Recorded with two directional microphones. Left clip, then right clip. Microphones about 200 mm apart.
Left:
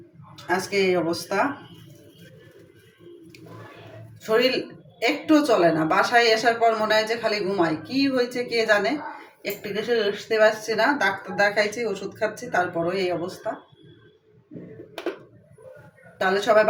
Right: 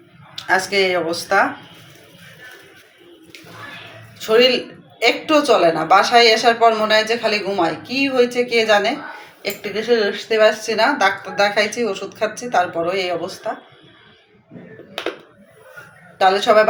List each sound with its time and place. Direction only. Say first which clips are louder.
0.4 s speech: right 6 dB; 15° left (ahead or behind)
4.3 s speech: right 7 dB; 15° left (ahead or behind)
16.1 s speech: right 6 dB; 15° left (ahead or behind)